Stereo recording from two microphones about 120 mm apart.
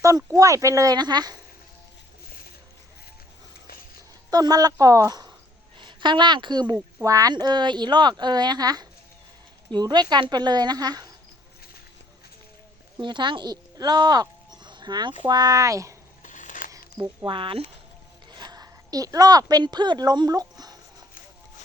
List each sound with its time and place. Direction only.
0.0 s speech: 25° right (ahead or behind)
4.3 s speech: 35° right (ahead or behind)
5.7 s a woman's voice: 40° right (ahead or behind)
13.0 s speech: 40° right (ahead or behind)
16.2 s scissors: 90° left
16.7 s a sound: 30° right (ahead or behind)
17.2 s speech: 45° right (ahead or behind)
18.3 s a woman's voice: 35° right (ahead or behind)